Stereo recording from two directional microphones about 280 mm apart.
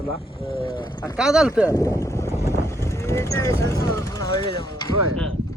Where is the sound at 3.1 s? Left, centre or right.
Centre.